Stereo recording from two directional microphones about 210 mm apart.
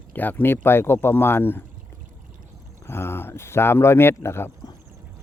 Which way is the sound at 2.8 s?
10° left (ahead or behind).